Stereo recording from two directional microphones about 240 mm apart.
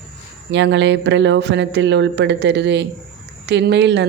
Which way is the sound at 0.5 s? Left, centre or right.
Right.